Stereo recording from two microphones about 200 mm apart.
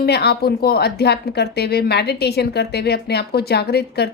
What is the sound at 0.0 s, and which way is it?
Speech, 55° left (ahead or behind).